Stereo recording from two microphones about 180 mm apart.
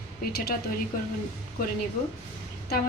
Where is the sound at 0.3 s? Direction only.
60° left (ahead or behind).